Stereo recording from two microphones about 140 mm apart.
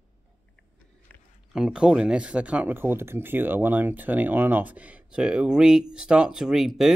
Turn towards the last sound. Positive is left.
turn(degrees=0)  # may be behind; listen again after turning